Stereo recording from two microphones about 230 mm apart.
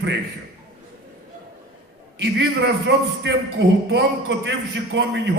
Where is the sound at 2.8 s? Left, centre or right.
Right.